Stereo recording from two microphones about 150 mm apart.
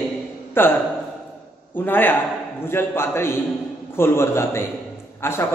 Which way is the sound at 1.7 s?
15° left (ahead or behind).